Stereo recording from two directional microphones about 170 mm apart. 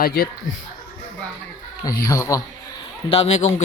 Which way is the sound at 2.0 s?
20° left (ahead or behind).